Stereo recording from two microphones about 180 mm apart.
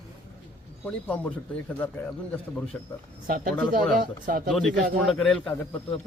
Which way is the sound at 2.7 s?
10° left (ahead or behind).